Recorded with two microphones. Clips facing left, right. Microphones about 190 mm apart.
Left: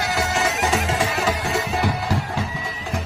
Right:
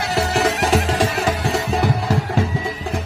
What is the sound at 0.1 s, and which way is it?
Music, 35° right (ahead or behind).